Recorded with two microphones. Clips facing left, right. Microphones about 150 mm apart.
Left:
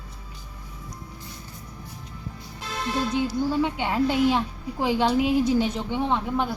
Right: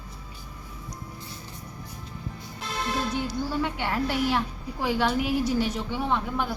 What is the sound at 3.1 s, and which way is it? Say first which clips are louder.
A woman's voice: left 5 dB; 20° left (ahead or behind).